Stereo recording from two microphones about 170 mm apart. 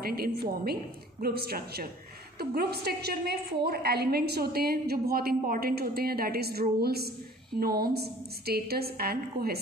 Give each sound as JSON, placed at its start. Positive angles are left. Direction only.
{"t": 0.0, "sound": "a woman's voice", "side_deg": -60}